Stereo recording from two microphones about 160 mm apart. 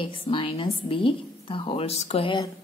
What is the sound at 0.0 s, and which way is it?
A woman's voice, 35° left (ahead or behind).